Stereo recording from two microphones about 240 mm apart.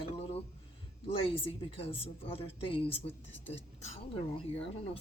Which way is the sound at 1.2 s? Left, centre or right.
Left.